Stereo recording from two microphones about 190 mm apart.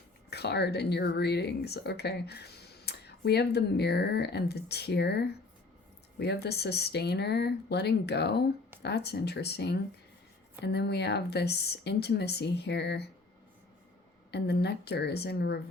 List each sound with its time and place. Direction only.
0.3 s speech: 60° left (ahead or behind)
14.3 s speech: 60° left (ahead or behind)